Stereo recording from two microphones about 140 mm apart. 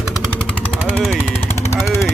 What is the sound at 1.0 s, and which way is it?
Jackhammer, 10° left (ahead or behind).